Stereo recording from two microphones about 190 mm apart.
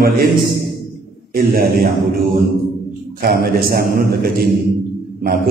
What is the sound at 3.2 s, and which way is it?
A man's voice, 50° right (ahead or behind).